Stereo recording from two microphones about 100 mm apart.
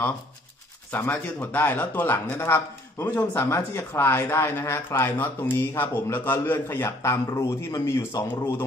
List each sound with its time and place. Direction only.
0.9 s speech: 20° left (ahead or behind)